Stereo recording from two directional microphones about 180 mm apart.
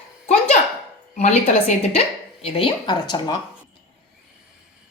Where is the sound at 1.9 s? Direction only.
30° left (ahead or behind).